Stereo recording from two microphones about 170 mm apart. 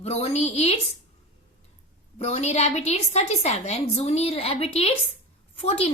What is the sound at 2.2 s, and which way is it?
A woman's voice, 40° left (ahead or behind).